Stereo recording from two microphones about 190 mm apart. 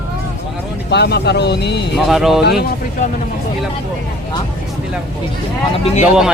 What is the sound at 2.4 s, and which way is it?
Speech, 55° left (ahead or behind).